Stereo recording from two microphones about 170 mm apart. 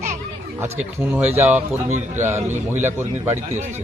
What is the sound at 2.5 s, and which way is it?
Speech, 45° right (ahead or behind).